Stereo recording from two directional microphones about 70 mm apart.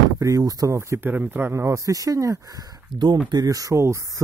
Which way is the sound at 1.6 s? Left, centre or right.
Right.